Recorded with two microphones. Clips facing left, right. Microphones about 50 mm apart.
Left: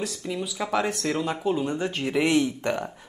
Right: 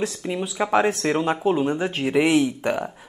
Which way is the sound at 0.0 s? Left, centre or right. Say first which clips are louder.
Right 4 dB; right.